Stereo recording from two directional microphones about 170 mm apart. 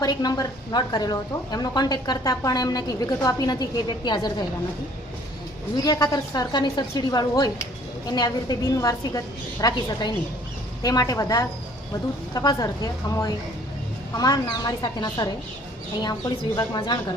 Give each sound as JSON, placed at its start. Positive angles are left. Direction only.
{"t": 0.0, "sound": "a woman's voice", "side_deg": 25}
{"t": 5.7, "sound": "a woman's voice", "side_deg": 25}
{"t": 16.6, "sound": "a woman's voice", "side_deg": 25}